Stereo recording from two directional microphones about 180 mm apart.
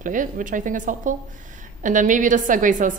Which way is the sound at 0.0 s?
45° right (ahead or behind).